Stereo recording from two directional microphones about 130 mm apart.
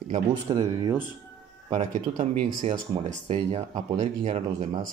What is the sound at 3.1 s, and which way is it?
Speech, 60° right (ahead or behind).